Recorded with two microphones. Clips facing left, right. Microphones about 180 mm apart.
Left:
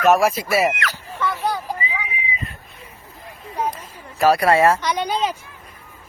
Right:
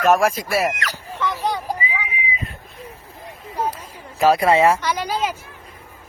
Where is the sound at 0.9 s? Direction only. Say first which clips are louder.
Even; 15° right (ahead or behind).